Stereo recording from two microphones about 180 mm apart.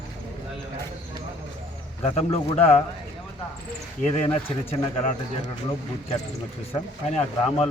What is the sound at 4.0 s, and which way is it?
Speech, 35° left (ahead or behind).